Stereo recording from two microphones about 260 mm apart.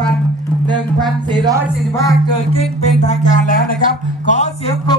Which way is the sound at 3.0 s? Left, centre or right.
Left.